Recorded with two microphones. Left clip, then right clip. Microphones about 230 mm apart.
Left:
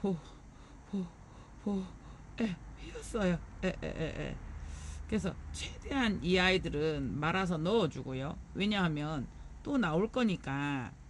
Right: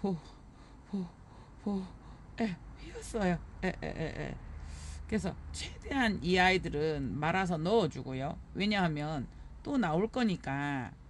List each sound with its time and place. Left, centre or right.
0.9 s speech: right
1.6 s a sound: right
2.3 s speech: right